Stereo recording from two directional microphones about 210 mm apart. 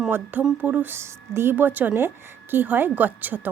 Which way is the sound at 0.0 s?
10° right (ahead or behind).